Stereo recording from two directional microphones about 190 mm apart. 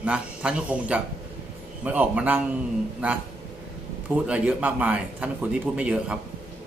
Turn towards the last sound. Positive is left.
turn(degrees=-5)  # may be behind; listen again after turning